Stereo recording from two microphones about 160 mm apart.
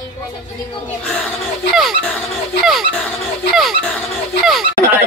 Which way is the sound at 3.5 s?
Centre (ahead or behind).